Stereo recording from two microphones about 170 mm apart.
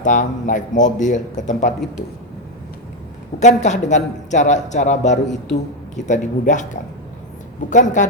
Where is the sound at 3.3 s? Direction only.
45° left (ahead or behind).